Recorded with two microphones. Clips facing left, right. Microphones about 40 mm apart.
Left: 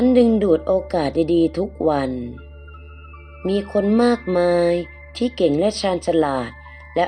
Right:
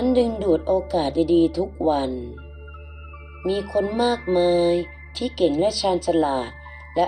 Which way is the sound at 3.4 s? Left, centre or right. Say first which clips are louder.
Left 3 dB; left.